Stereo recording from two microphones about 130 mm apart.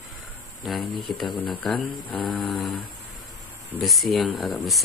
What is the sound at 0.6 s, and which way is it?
Speech, centre (ahead or behind).